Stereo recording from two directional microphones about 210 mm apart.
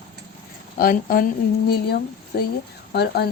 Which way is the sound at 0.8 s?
45° left (ahead or behind).